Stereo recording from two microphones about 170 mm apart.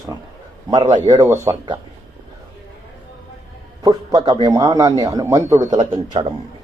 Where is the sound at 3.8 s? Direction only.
25° right (ahead or behind).